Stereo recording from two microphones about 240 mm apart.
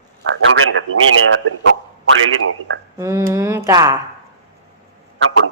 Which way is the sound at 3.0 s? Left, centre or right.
Centre.